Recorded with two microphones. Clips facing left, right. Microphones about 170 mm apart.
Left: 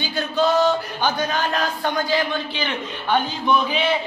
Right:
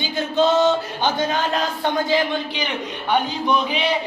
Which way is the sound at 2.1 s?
20° right (ahead or behind).